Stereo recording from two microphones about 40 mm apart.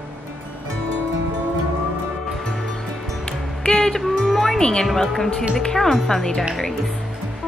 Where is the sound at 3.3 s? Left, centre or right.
Left.